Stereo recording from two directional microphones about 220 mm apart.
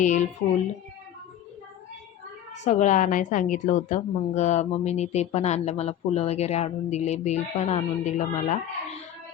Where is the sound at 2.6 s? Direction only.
30° left (ahead or behind).